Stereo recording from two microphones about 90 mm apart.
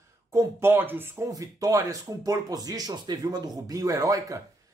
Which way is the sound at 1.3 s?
40° right (ahead or behind).